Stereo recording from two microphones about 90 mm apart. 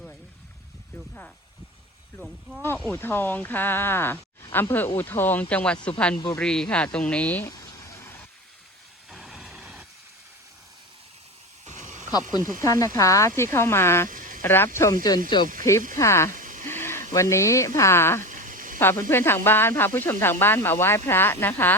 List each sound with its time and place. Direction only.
2.6 s speech: 25° left (ahead or behind)
7.4 s a sound: 35° left (ahead or behind)
9.0 s vehicle: centre (ahead or behind)
12.1 s speech: 45° left (ahead or behind); by 14.9 s 30° left (ahead or behind)
15.0 s speech: 50° left (ahead or behind)
15.6 s a sound: 35° left (ahead or behind)
17.2 s speech: 35° left (ahead or behind)